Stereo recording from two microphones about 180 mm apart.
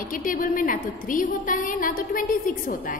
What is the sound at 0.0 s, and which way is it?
A woman's voice, 50° left (ahead or behind).